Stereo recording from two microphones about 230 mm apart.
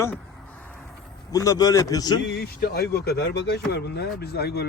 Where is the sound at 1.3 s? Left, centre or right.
Centre.